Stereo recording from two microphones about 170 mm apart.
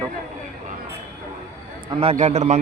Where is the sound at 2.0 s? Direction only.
40° right (ahead or behind).